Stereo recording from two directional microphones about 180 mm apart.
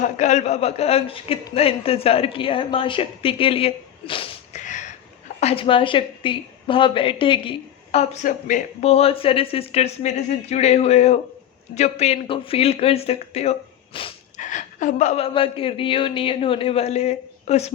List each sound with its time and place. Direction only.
0.0 s a woman's voice: 40° left (ahead or behind)
4.5 s a sound: 45° left (ahead or behind)
5.4 s a woman's voice: 35° left (ahead or behind)
14.3 s a woman's voice: 45° left (ahead or behind)